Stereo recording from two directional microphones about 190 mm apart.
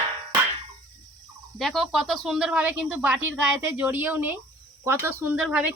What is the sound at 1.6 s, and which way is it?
Speech, centre (ahead or behind).